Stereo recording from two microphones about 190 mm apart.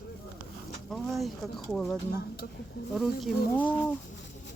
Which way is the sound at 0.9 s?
Centre (ahead or behind).